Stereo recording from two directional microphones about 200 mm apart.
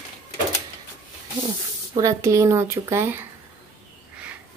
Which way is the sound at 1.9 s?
15° right (ahead or behind).